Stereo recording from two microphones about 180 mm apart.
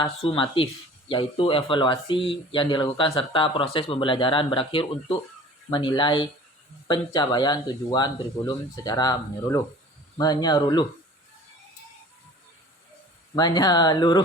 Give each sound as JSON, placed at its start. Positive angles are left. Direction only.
{"t": 0.0, "sound": "speech", "side_deg": 30}
{"t": 13.3, "sound": "speech", "side_deg": 20}